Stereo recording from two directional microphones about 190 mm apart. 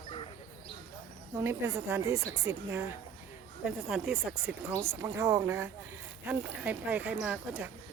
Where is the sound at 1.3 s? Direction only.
15° right (ahead or behind).